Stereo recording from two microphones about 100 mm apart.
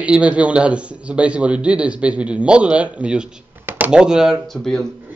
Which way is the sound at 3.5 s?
20° right (ahead or behind).